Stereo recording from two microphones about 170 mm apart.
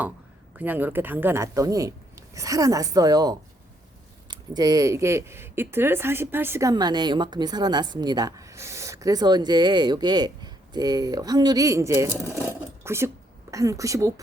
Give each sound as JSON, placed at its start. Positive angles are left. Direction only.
{"t": 0.6, "sound": "speech", "side_deg": -10}
{"t": 12.5, "sound": "sewing machine", "side_deg": -15}
{"t": 13.5, "sound": "speech", "side_deg": -20}